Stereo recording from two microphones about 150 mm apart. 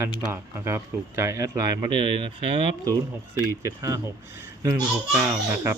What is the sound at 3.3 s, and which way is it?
Speech, 20° right (ahead or behind).